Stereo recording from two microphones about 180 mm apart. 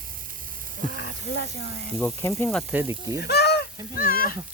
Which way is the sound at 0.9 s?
65° left (ahead or behind).